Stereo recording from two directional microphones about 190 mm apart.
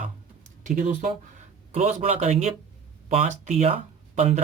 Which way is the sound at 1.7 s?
40° right (ahead or behind).